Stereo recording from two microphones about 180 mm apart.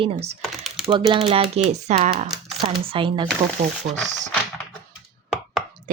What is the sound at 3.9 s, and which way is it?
Speech, 40° right (ahead or behind).